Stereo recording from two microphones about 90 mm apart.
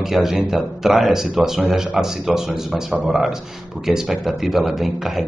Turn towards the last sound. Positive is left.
turn(degrees=0)  # may be behind; listen again after turning